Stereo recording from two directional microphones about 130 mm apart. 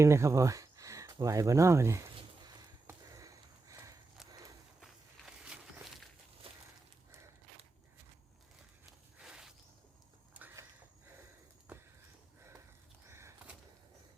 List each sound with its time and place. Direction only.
0.0 s speech: 20° right (ahead or behind)
2.8 s sniff: 25° right (ahead or behind)
4.8 s walk: 5° right (ahead or behind)
8.9 s walk: 5° right (ahead or behind)
13.1 s bird: 20° right (ahead or behind)